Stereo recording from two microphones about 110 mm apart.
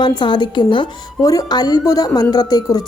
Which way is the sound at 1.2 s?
35° left (ahead or behind).